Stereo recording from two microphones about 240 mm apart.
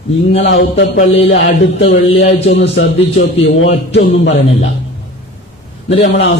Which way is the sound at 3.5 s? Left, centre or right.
Left.